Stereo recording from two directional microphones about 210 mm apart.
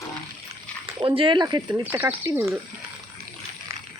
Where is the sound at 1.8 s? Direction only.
10° right (ahead or behind).